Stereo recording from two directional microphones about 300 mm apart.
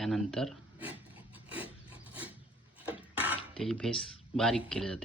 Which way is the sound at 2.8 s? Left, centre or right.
Centre.